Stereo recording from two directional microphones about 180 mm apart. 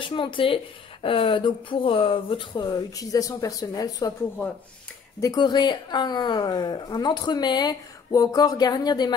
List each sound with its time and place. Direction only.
0.0 s a woman's voice: 30° left (ahead or behind)
5.2 s a woman's voice: 25° left (ahead or behind)